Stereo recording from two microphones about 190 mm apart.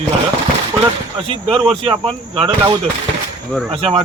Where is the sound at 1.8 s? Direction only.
30° right (ahead or behind).